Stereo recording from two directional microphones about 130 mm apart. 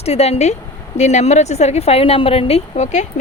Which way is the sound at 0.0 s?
55° left (ahead or behind).